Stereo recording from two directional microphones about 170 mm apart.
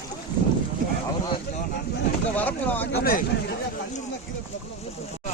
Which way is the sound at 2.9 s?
65° left (ahead or behind).